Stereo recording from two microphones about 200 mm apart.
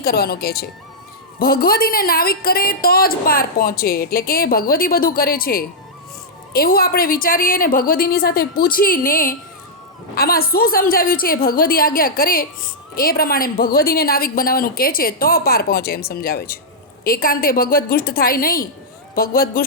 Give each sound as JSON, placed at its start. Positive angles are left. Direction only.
{"t": 0.0, "sound": "a woman's voice", "side_deg": 50}